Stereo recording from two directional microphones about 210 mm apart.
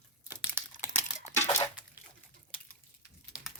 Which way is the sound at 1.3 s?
10° left (ahead or behind).